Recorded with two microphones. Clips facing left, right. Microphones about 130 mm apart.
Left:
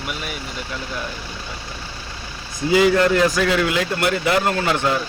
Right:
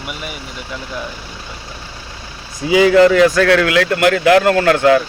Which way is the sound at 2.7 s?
90° right.